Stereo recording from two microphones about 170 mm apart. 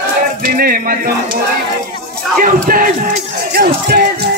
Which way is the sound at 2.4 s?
55° right (ahead or behind).